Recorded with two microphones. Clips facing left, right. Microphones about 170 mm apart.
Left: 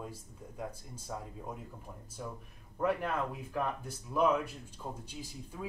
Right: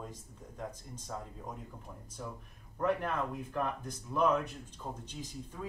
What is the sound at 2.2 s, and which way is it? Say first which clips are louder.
Speech: left 1 dB; 5° left (ahead or behind).